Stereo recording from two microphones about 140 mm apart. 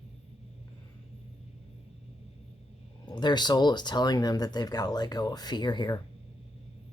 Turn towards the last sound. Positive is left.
turn(degrees=30)  # may be behind; listen again after turning